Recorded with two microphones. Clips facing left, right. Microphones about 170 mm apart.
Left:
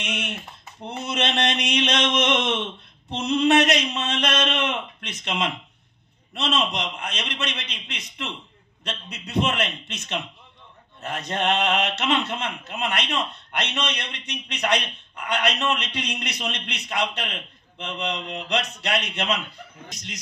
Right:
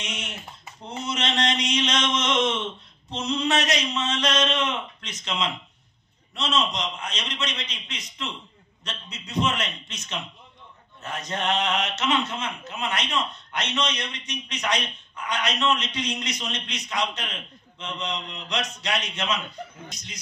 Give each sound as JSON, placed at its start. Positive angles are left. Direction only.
{"t": 0.0, "sound": "a man's voice", "side_deg": 60}
{"t": 0.8, "sound": "mantra", "side_deg": 60}
{"t": 6.3, "sound": "a man's voice", "side_deg": 60}
{"t": 19.9, "sound": "a man's voice", "side_deg": 80}